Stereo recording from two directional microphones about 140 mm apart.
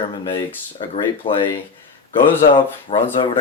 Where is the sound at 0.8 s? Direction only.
40° left (ahead or behind).